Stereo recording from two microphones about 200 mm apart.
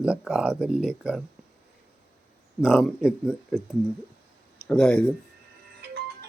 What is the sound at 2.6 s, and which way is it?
Speech, 5° right (ahead or behind).